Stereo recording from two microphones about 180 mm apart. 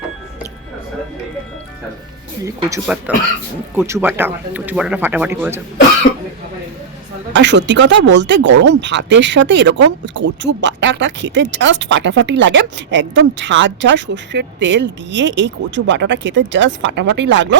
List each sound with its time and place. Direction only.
2.4 s speech: 15° right (ahead or behind)
7.3 s speech: 75° right (ahead or behind)